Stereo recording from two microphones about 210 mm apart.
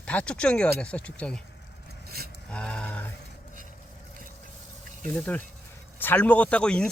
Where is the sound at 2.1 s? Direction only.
50° right (ahead or behind).